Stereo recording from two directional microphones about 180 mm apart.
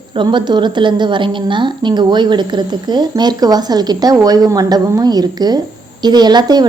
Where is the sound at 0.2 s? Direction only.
25° right (ahead or behind).